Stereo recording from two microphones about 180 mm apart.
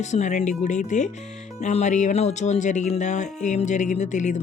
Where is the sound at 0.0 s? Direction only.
40° left (ahead or behind).